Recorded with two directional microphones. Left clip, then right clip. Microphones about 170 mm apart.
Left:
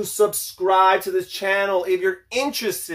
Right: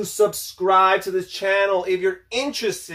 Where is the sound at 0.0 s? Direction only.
15° left (ahead or behind).